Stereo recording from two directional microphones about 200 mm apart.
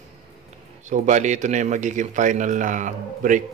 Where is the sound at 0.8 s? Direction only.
35° right (ahead or behind).